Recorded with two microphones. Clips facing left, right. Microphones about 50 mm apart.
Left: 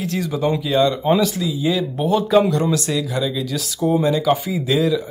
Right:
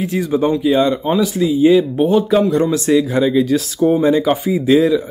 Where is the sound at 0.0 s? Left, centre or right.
Centre.